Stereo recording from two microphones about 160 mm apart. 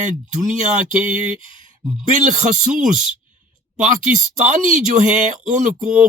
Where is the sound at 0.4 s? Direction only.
50° right (ahead or behind).